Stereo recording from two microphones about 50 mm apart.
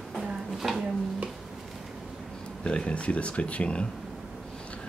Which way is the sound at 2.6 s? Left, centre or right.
Left.